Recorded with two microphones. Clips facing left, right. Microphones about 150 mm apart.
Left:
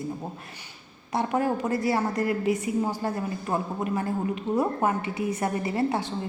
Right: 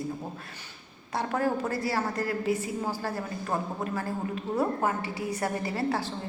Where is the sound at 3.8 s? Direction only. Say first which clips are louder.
Left 4 dB; 25° left (ahead or behind).